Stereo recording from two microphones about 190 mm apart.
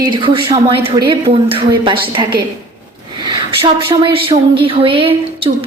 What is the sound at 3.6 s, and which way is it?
Speech, 25° right (ahead or behind).